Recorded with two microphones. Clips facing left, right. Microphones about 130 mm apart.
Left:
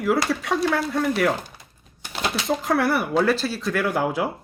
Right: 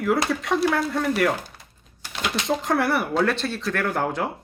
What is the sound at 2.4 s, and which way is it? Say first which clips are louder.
Speech: even; centre (ahead or behind).